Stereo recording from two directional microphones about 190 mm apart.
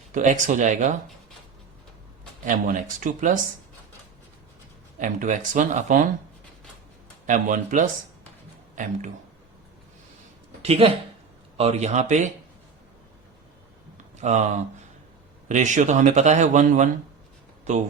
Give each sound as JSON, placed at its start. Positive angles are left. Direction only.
{"t": 0.1, "sound": "speech", "side_deg": -40}
{"t": 2.4, "sound": "speech", "side_deg": -40}
{"t": 4.9, "sound": "speech", "side_deg": -40}
{"t": 7.3, "sound": "speech", "side_deg": -40}
{"t": 10.6, "sound": "speech", "side_deg": -30}
{"t": 14.2, "sound": "speech", "side_deg": -35}